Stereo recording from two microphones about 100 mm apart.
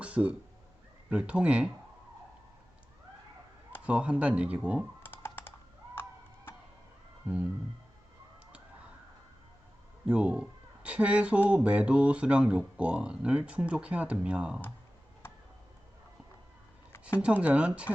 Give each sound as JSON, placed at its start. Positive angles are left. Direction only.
{"t": 0.0, "sound": "cat", "side_deg": -10}
{"t": 1.1, "sound": "speech", "side_deg": -10}
{"t": 3.8, "sound": "speech", "side_deg": -10}
{"t": 5.0, "sound": "computer keyboard", "side_deg": 20}
{"t": 7.3, "sound": "speech", "side_deg": -15}
{"t": 10.1, "sound": "speech", "side_deg": -10}
{"t": 17.2, "sound": "speech", "side_deg": -10}